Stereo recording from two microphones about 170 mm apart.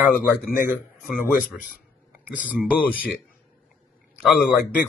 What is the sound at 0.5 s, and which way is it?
Speech, 55° left (ahead or behind).